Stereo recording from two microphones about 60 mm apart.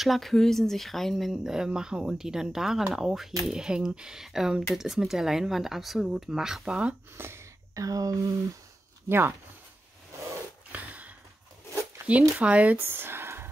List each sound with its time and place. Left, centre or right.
0.0 s speech: centre
7.2 s speech: right
7.7 s speech: right
10.7 s a sound: right
12.1 s speech: right
12.8 s a sound: right